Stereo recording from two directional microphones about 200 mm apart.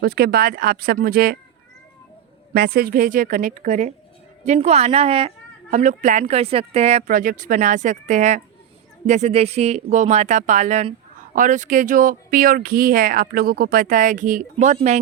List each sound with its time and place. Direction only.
0.0 s speech: 50° right (ahead or behind)
2.5 s speech: 50° right (ahead or behind); by 14.9 s 35° right (ahead or behind)